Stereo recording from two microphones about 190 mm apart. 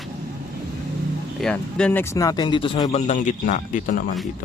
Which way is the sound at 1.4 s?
5° left (ahead or behind).